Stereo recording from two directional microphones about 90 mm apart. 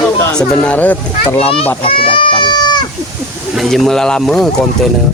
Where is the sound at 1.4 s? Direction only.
90° left; by 2.8 s 55° left (ahead or behind).